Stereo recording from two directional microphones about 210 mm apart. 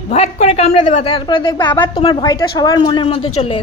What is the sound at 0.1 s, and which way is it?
A woman's voice, 30° left (ahead or behind).